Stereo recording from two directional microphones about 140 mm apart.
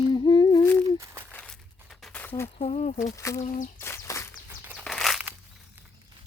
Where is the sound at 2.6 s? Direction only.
55° left (ahead or behind).